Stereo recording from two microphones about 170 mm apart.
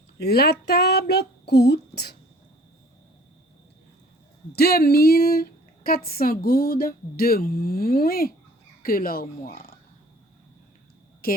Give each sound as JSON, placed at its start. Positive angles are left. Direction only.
{"t": 0.2, "sound": "speech", "side_deg": 70}
{"t": 4.5, "sound": "speech", "side_deg": 65}
{"t": 11.2, "sound": "a woman's voice", "side_deg": 60}